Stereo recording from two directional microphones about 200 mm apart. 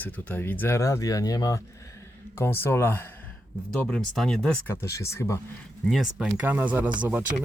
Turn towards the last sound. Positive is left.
turn(degrees=-5)  # may be behind; listen again after turning